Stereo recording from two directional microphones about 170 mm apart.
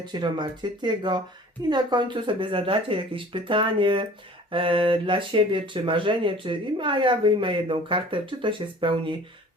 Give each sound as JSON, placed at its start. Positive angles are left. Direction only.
{"t": 0.0, "sound": "speech", "side_deg": -25}